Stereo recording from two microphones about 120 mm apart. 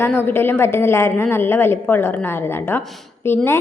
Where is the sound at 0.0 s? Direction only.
20° left (ahead or behind).